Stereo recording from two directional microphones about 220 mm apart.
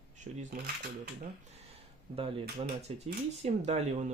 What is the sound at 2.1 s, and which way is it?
Speech, 25° right (ahead or behind).